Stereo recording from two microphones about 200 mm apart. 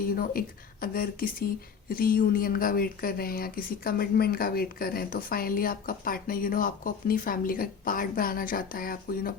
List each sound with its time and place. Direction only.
0.1 s speech: 45° left (ahead or behind)